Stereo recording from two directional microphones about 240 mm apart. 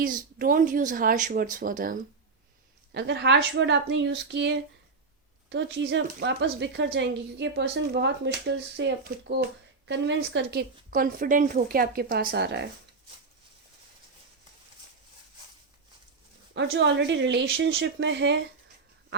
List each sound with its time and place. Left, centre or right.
0.0 s speech: right
16.7 s speech: right